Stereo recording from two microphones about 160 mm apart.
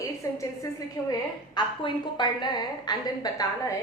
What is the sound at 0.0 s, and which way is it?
A woman's voice, 20° left (ahead or behind).